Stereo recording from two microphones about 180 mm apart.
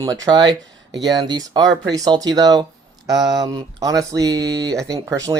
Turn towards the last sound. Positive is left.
turn(degrees=-20)  # may be behind; listen again after turning